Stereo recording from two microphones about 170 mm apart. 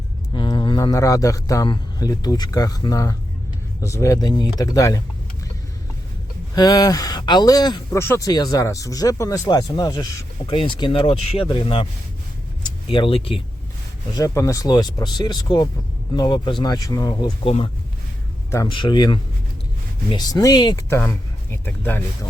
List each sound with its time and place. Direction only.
0.3 s speech: 25° left (ahead or behind)
6.6 s speech: 25° left (ahead or behind)
12.9 s speech: 30° left (ahead or behind)
14.1 s speech: 20° left (ahead or behind)
18.5 s speech: 25° left (ahead or behind)
21.6 s speech: 10° left (ahead or behind)